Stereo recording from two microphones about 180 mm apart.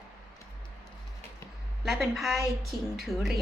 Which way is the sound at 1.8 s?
Centre (ahead or behind).